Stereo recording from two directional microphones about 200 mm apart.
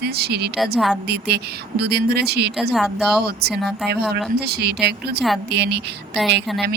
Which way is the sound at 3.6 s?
Centre (ahead or behind).